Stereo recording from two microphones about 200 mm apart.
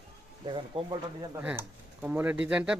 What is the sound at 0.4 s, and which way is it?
Speech, 25° right (ahead or behind).